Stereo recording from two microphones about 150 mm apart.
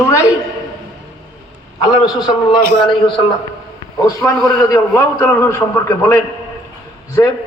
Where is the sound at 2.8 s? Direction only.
35° left (ahead or behind).